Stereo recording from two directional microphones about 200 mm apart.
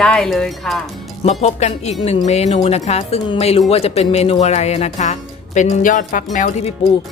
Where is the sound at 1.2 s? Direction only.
30° left (ahead or behind).